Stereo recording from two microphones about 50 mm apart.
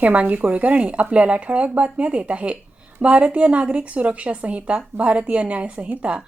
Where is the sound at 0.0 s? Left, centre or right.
Right.